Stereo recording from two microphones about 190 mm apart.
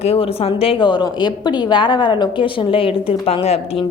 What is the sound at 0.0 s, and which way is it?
A woman's voice, 30° left (ahead or behind).